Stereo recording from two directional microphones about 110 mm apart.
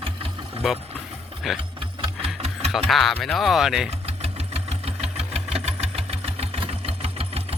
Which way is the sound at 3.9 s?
65° right (ahead or behind).